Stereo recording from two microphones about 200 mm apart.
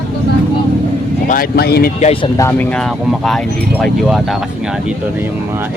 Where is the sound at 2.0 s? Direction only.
35° left (ahead or behind).